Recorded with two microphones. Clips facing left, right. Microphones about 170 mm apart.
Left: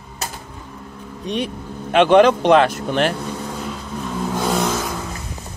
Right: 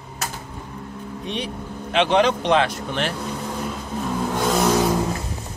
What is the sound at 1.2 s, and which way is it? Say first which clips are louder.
Speech: left 6 dB; 50° left (ahead or behind).